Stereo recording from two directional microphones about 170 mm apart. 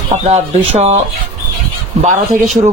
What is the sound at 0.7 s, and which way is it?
Speech, 40° right (ahead or behind).